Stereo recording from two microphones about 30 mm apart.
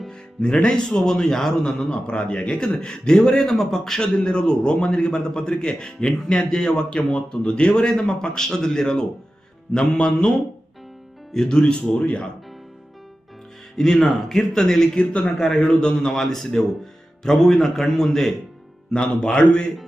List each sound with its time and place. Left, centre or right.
0.1 s speech: left
1.9 s speech: left
2.7 s speech: left
4.0 s speech: left
9.7 s speech: left
11.3 s speech: centre
11.9 s speech: left
13.7 s speech: centre
16.0 s speech: centre
18.9 s speech: left